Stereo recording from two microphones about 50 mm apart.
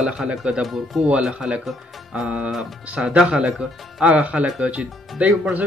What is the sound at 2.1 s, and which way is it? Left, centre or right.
Speech, right.